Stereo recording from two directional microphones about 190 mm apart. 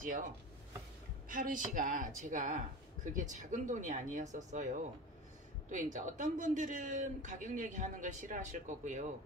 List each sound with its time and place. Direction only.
0.0 s speech: 45° right (ahead or behind)
1.3 s speech: 45° right (ahead or behind)